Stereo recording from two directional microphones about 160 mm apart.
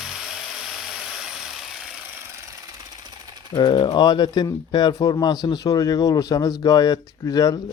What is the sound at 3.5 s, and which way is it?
Speech, 30° left (ahead or behind).